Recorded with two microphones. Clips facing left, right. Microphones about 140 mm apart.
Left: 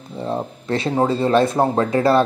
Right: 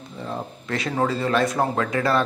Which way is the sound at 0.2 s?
30° left (ahead or behind).